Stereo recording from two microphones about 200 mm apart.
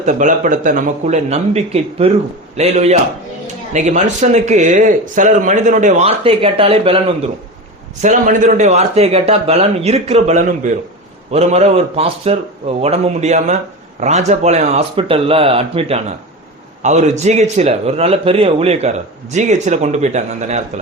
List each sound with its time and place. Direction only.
0.0 s a man's voice: 40° right (ahead or behind)
8.0 s a man's voice: 40° right (ahead or behind)